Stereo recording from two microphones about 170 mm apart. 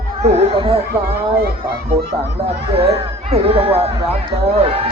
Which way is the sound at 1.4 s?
70° right (ahead or behind).